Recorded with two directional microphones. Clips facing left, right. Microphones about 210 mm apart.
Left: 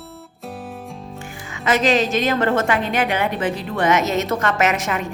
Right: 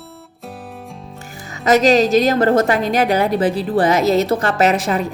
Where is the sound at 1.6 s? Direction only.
40° right (ahead or behind).